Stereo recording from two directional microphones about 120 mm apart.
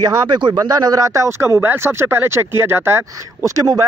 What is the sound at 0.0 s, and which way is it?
Speech, 40° right (ahead or behind).